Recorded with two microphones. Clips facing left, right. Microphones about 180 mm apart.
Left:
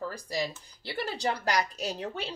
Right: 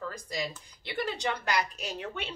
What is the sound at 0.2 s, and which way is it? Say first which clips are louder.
A woman's voice: left 3 dB; 35° left (ahead or behind).